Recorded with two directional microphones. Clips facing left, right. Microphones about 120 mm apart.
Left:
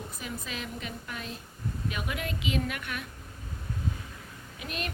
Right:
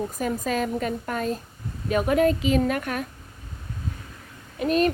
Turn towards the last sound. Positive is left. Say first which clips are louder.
# right 16 dB
turn(degrees=-40)  # may be behind; listen again after turning